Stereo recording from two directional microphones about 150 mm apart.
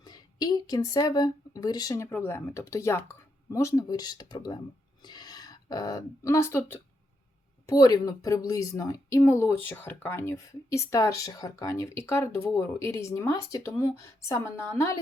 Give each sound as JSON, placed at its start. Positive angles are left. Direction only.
{"t": 0.0, "sound": "a woman's voice", "side_deg": 25}